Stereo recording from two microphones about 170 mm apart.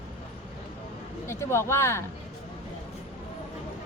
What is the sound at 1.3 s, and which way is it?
Speech, 15° left (ahead or behind).